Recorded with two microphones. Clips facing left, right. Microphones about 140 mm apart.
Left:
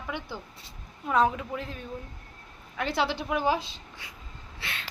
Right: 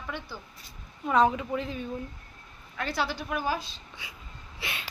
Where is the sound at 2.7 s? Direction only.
20° left (ahead or behind).